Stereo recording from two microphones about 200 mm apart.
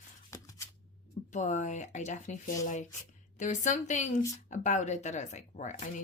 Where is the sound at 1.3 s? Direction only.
40° left (ahead or behind).